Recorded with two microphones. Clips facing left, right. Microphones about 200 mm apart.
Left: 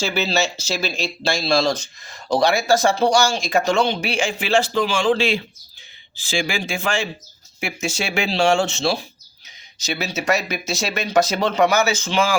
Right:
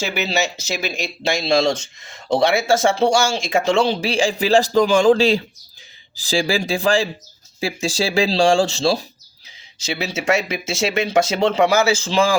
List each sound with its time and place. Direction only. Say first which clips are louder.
0.0 s speech: even; 15° right (ahead or behind); by 12.3 s 35° right (ahead or behind)